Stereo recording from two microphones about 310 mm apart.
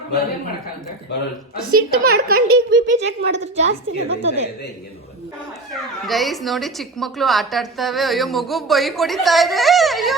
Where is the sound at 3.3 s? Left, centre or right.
Right.